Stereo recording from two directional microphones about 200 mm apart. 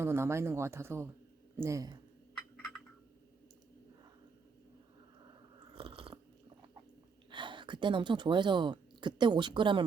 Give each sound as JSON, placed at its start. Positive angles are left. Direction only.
{"t": 0.0, "sound": "speech", "side_deg": -10}
{"t": 5.7, "sound": "chewing", "side_deg": -25}
{"t": 7.3, "sound": "speech", "side_deg": -25}